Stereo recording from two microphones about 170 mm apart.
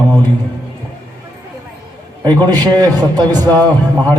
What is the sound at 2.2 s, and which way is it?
A man's voice, 25° right (ahead or behind).